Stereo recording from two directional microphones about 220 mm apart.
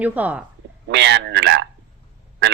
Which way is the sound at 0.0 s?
5° right (ahead or behind).